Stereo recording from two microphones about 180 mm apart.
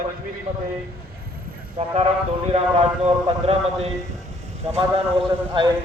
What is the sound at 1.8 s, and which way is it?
A man's voice, 35° right (ahead or behind).